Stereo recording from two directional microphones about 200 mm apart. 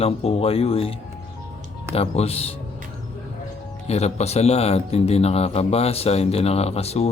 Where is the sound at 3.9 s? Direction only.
35° left (ahead or behind).